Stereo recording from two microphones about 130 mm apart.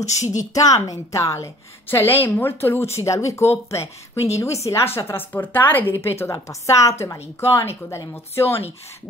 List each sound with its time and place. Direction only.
0.2 s a woman's voice: 65° left (ahead or behind)
0.6 s a woman's voice: 25° left (ahead or behind)